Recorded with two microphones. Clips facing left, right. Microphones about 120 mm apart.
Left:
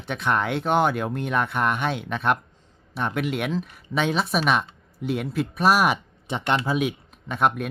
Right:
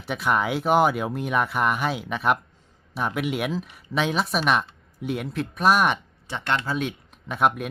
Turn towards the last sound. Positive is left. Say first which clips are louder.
# even
turn(degrees=0)  # may be behind; listen again after turning